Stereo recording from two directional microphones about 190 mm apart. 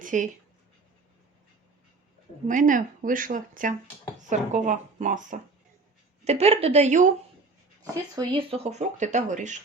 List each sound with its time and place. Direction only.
0.0 s writing: 45° right (ahead or behind)
2.5 s speech: 45° right (ahead or behind)
8.3 s speech: 30° right (ahead or behind)